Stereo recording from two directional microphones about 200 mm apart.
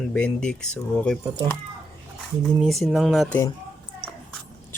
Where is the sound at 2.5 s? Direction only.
Centre (ahead or behind).